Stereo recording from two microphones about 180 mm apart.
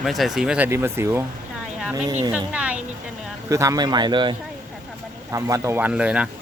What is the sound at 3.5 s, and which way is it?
Speech, 20° right (ahead or behind).